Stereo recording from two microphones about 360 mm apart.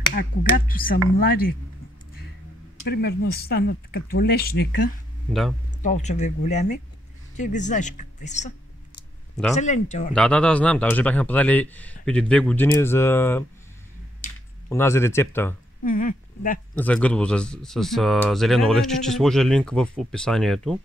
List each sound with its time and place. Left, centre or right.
0.1 s speech: left
2.9 s speech: left
9.6 s speech: centre
10.1 s speech: centre
14.7 s speech: centre
15.8 s speech: left
16.7 s speech: centre